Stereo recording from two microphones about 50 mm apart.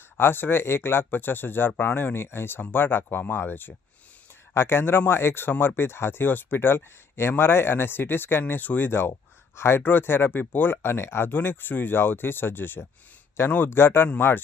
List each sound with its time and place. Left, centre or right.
0.2 s speech: left
8.6 s speech: left
8.9 s speech: left
9.8 s speech: left
10.8 s speech: left